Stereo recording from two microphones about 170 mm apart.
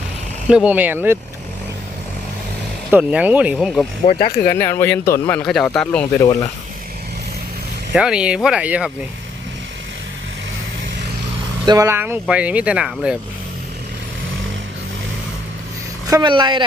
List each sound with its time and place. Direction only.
0.4 s speech: 5° right (ahead or behind)
2.9 s speech: 5° right (ahead or behind)
4.0 s speech: 60° left (ahead or behind)
4.5 s a man's voice: 15° left (ahead or behind)
5.5 s speech: 5° left (ahead or behind)
7.9 s speech: 5° right (ahead or behind)
11.6 s speech: 20° right (ahead or behind); by 13.1 s 5° right (ahead or behind)
16.0 s speech: 25° right (ahead or behind)